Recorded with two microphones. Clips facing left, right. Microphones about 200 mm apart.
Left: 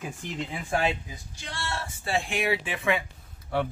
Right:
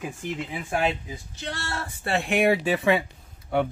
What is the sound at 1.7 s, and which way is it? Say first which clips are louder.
Speech: right 2 dB; 55° right (ahead or behind).